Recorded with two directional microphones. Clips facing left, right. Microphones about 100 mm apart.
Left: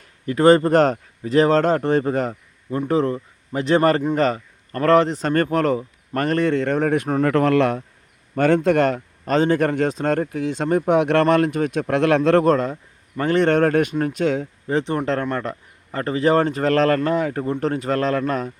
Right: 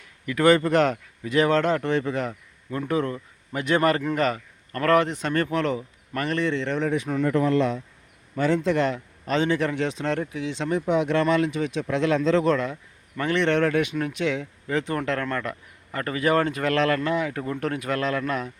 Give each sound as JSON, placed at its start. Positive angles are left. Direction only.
{"t": 0.0, "sound": "speech", "side_deg": 35}
{"t": 2.6, "sound": "speech", "side_deg": 30}
{"t": 7.3, "sound": "speech", "side_deg": 75}
{"t": 12.5, "sound": "speech", "side_deg": 40}